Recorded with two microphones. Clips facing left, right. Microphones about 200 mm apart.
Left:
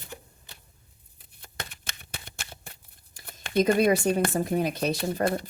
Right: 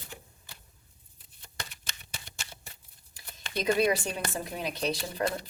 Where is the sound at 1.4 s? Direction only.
55° left (ahead or behind).